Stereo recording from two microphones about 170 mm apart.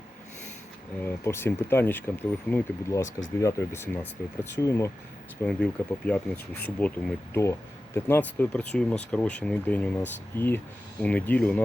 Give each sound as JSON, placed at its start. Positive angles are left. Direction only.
{"t": 1.0, "sound": "speech", "side_deg": 15}
{"t": 5.4, "sound": "speech", "side_deg": 5}